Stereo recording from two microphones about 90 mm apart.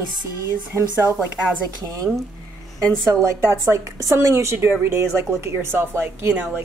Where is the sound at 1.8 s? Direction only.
40° right (ahead or behind).